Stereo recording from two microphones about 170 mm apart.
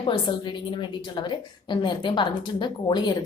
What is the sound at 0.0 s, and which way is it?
A woman's voice, 30° left (ahead or behind).